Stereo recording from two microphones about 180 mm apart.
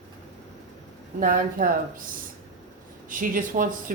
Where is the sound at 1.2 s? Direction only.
50° right (ahead or behind).